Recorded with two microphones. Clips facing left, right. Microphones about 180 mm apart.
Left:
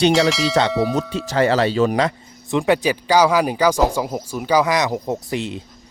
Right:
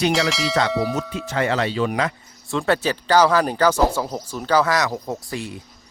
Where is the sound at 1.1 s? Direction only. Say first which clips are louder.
Left 5 dB; 35° left (ahead or behind).